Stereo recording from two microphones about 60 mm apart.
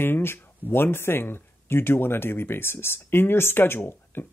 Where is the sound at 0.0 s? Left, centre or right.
Left.